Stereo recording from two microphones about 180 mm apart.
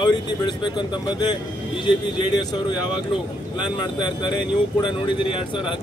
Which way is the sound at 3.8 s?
25° left (ahead or behind).